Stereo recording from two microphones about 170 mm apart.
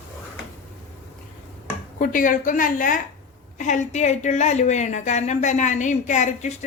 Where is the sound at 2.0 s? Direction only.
50° left (ahead or behind).